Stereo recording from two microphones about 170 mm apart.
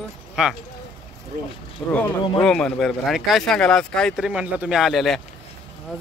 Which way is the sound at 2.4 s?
5° left (ahead or behind).